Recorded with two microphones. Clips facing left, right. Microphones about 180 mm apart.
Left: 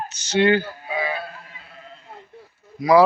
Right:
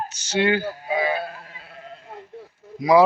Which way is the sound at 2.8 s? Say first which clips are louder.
Left 1 dB; 20° right (ahead or behind).